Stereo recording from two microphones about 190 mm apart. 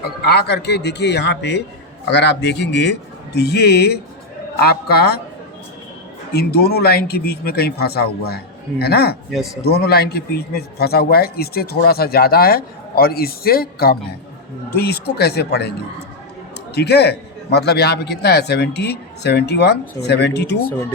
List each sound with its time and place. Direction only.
0.0 s a man's voice: 60° left (ahead or behind)
6.3 s a man's voice: 55° left (ahead or behind)
16.7 s a man's voice: 60° left (ahead or behind)